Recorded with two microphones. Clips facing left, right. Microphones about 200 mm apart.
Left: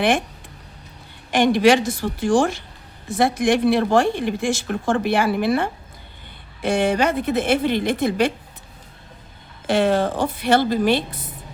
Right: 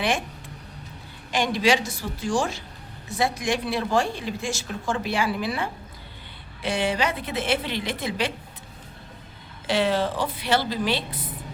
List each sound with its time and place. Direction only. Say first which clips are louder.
1.3 s a woman's voice: left 7 dB; 55° left (ahead or behind)
9.6 s a woman's voice: left 5 dB; 50° left (ahead or behind)